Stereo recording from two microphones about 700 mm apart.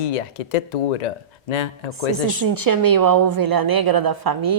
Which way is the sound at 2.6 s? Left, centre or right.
Right.